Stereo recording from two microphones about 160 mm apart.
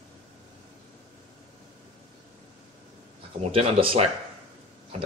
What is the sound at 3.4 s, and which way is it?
Speech, 40° right (ahead or behind).